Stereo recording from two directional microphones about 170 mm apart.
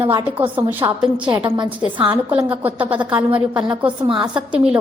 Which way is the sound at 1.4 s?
25° right (ahead or behind).